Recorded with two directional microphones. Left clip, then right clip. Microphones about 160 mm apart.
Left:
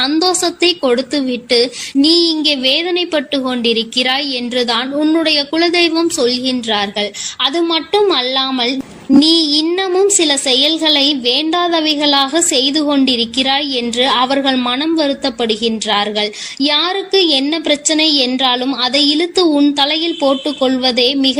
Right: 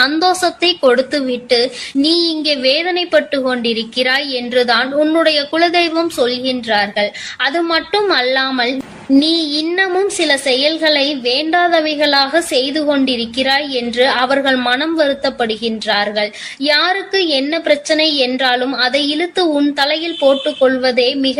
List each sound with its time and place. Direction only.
0.0 s a woman's voice: 30° left (ahead or behind)